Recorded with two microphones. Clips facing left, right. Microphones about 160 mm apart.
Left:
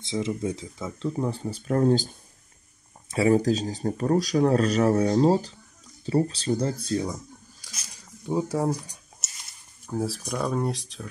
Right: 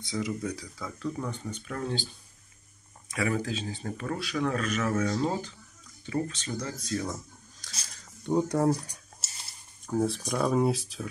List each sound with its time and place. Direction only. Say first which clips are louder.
0.0 s speech: left 4 dB; 25° left (ahead or behind); by 2.1 s 45° left (ahead or behind)
3.1 s speech: left 9 dB; 30° left (ahead or behind)
7.9 s speech: even; 5° left (ahead or behind)
9.2 s stir: even; 30° right (ahead or behind)
9.8 s speech: right 1 dB; 5° left (ahead or behind)